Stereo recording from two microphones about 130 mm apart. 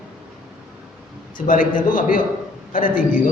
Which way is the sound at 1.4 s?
90° left.